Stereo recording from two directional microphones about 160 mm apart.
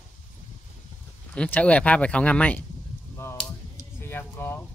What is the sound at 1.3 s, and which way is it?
Speech, 10° left (ahead or behind).